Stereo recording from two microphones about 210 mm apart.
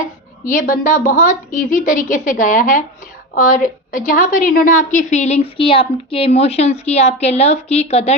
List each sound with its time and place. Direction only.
0.4 s a woman's voice: 40° left (ahead or behind)